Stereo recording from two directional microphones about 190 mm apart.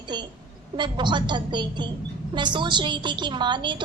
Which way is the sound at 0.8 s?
25° right (ahead or behind).